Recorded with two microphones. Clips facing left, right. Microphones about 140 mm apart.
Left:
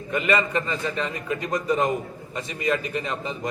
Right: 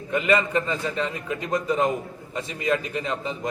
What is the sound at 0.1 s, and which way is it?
Speech, 5° right (ahead or behind).